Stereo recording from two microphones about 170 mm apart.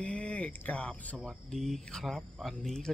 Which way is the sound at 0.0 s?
5° left (ahead or behind).